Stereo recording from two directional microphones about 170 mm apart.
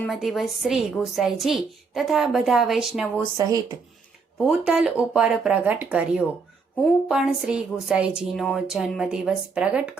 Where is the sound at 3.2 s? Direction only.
20° right (ahead or behind).